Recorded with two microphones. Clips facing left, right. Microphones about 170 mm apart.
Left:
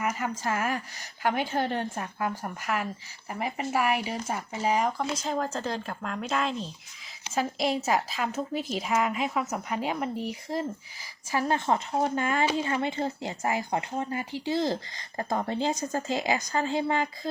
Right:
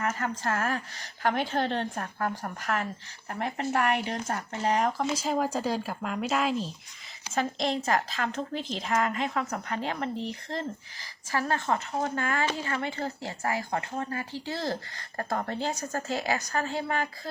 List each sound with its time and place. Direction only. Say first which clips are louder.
0.0 s speech: even; 10° left (ahead or behind)